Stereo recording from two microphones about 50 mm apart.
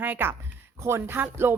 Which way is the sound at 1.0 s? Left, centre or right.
Right.